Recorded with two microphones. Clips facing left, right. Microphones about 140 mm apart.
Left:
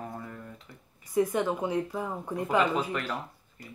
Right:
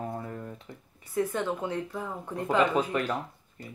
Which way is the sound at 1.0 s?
15° left (ahead or behind).